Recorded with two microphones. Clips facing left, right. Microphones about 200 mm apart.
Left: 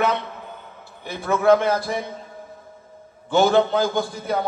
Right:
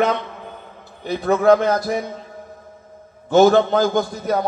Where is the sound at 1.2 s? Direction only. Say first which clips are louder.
Right 2 dB; 40° right (ahead or behind).